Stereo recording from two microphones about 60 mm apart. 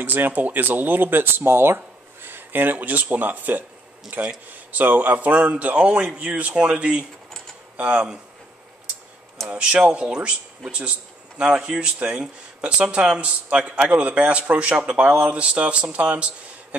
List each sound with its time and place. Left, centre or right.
0.0 s speech: right
9.5 s speech: centre